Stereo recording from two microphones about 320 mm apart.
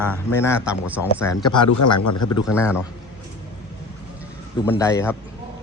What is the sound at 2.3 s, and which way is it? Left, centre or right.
Speech, centre.